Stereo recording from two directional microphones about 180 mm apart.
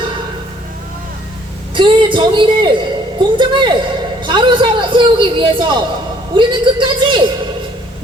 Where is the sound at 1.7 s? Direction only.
25° right (ahead or behind).